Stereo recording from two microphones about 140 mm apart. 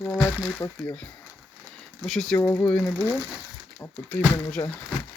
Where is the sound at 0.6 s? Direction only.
15° left (ahead or behind).